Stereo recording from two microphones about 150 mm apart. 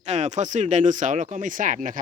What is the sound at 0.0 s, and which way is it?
Speech, 50° right (ahead or behind).